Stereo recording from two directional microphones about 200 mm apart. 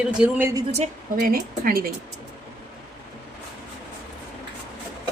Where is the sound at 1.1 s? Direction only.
50° right (ahead or behind).